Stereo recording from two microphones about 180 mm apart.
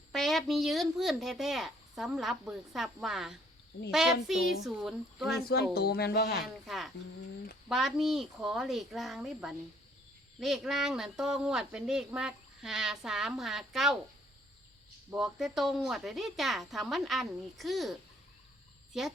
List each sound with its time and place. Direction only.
0.1 s speech: centre (ahead or behind)
5.3 s speech: 60° left (ahead or behind)
6.7 s speech: centre (ahead or behind)
15.1 s speech: centre (ahead or behind)